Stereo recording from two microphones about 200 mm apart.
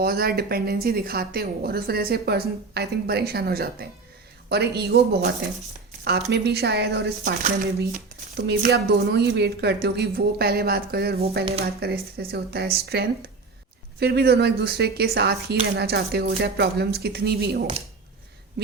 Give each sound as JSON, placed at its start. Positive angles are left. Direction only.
{"t": 0.0, "sound": "a woman's voice", "side_deg": -50}
{"t": 7.4, "sound": "a woman's voice", "side_deg": -45}